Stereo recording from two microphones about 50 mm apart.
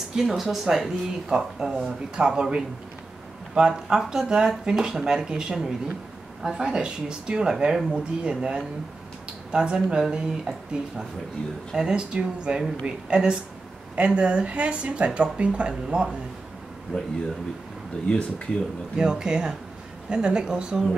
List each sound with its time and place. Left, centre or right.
0.1 s speech: centre
16.9 s speech: left
18.9 s speech: centre